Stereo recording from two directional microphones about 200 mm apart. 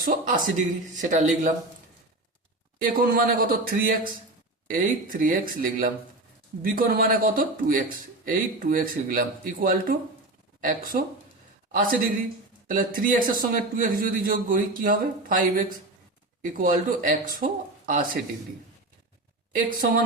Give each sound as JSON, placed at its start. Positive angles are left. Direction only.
{"t": 0.0, "sound": "speech", "side_deg": -40}
{"t": 2.8, "sound": "speech", "side_deg": -45}
{"t": 6.6, "sound": "a man's voice", "side_deg": -45}
{"t": 19.5, "sound": "speech", "side_deg": -45}